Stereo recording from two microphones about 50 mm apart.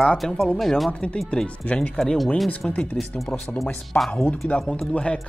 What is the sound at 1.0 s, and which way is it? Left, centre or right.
Speech, centre.